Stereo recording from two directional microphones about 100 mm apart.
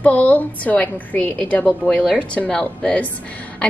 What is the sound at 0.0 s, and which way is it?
A woman's voice, 15° left (ahead or behind).